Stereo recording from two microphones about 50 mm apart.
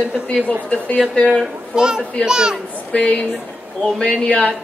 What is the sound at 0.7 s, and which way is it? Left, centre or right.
Speech, left.